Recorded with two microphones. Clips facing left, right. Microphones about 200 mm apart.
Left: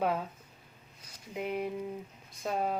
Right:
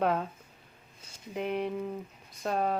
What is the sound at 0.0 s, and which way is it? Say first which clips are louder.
Speech: right 3 dB; 5° left (ahead or behind).